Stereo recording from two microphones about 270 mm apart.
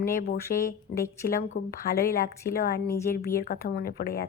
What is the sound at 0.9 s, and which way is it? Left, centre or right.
Speech, left.